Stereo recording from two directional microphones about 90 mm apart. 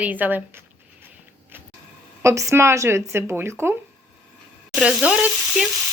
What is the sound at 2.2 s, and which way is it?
A woman's voice, 35° right (ahead or behind).